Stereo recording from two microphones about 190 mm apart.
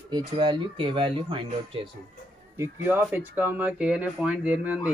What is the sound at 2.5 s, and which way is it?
Speech, 10° right (ahead or behind).